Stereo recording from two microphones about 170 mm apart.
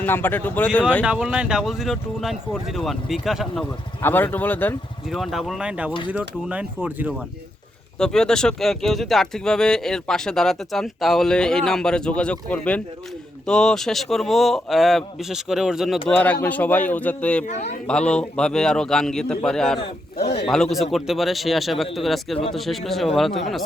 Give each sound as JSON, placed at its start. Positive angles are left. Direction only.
{"t": 0.0, "sound": "speech", "side_deg": 10}
{"t": 1.0, "sound": "speech", "side_deg": -5}
{"t": 4.0, "sound": "speech", "side_deg": 10}
{"t": 5.0, "sound": "speech", "side_deg": 0}
{"t": 7.9, "sound": "speech", "side_deg": 5}
{"t": 17.4, "sound": "speech", "side_deg": 40}
{"t": 17.8, "sound": "speech", "side_deg": 5}